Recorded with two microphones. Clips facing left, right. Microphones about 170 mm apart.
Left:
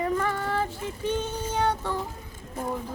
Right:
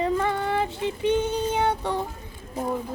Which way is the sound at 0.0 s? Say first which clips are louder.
Right 3 dB; 20° right (ahead or behind).